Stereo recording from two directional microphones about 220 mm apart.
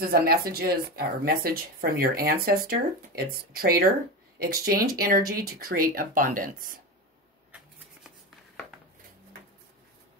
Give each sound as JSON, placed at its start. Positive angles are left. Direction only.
{"t": 0.0, "sound": "speech", "side_deg": -45}